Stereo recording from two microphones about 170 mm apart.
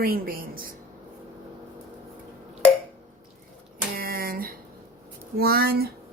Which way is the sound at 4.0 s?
60° right (ahead or behind).